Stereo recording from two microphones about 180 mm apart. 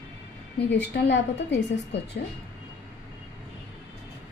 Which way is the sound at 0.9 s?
80° left.